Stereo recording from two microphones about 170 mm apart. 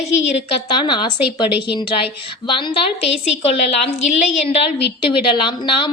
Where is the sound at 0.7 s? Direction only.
25° left (ahead or behind).